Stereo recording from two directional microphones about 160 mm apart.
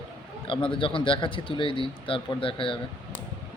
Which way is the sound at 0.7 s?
35° left (ahead or behind).